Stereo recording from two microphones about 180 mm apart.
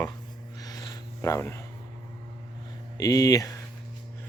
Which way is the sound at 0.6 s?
20° left (ahead or behind).